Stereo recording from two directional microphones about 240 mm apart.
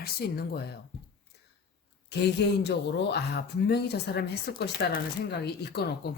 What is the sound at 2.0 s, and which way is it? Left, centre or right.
A woman's voice, left.